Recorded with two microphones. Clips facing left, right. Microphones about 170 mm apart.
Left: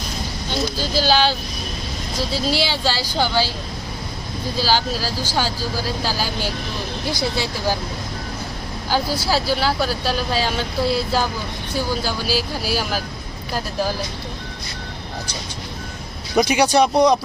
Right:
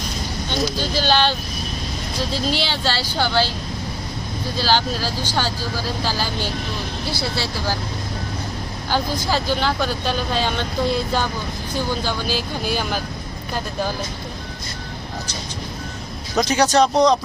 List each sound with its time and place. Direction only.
0.8 s speech: 10° left (ahead or behind)
2.6 s speech: 10° left (ahead or behind)
4.5 s speech: 10° left (ahead or behind)
8.9 s speech: 10° left (ahead or behind)
16.3 s speech: 10° left (ahead or behind)